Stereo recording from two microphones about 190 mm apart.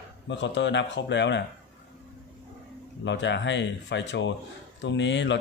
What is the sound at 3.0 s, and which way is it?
Speech, 65° left (ahead or behind).